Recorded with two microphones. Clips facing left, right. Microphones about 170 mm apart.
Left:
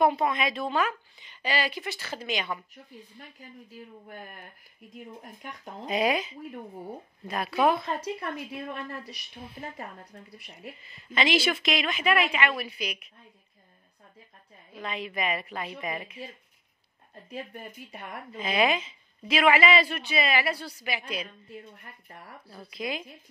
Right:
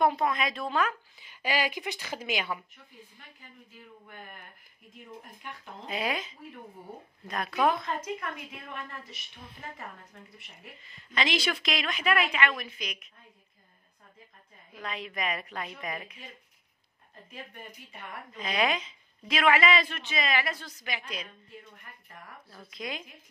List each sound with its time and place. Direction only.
0.0 s a woman's voice: 5° left (ahead or behind)
1.3 s a woman's voice: 10° right (ahead or behind)
2.7 s a woman's voice: 40° left (ahead or behind)
5.9 s a woman's voice: 15° left (ahead or behind)
7.7 s a woman's voice: 30° left (ahead or behind)
11.1 s a woman's voice: 5° left (ahead or behind)
14.8 s a woman's voice: 5° left (ahead or behind)
17.3 s a woman's voice: 40° left (ahead or behind)
18.3 s a woman's voice: 5° left (ahead or behind)
22.7 s a woman's voice: 5° left (ahead or behind)